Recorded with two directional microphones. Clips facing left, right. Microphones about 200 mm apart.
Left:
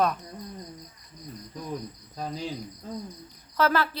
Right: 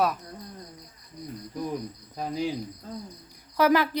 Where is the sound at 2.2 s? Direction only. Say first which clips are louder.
Right 4 dB; 10° right (ahead or behind).